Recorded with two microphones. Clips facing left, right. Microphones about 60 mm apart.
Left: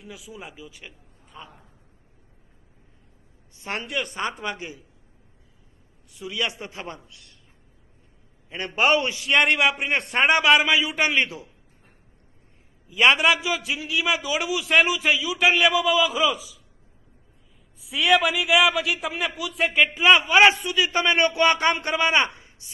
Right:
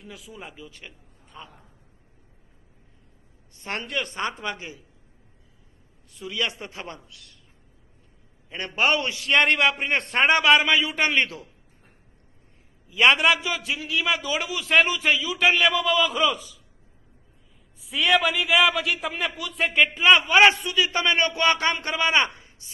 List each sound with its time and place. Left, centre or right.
0.0 s a man's voice: centre
3.6 s a man's voice: centre
6.1 s a man's voice: centre
8.5 s a man's voice: centre
9.2 s a man's voice: centre
12.9 s a man's voice: centre
17.7 s a man's voice: centre
20.5 s a man's voice: left